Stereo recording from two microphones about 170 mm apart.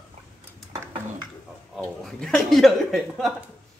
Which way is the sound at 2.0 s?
5° left (ahead or behind).